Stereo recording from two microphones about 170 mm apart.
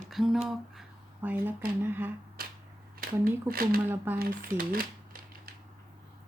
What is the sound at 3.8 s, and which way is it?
Speech, 10° right (ahead or behind).